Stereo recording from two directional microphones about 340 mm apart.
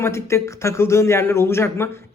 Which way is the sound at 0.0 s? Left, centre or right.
Centre.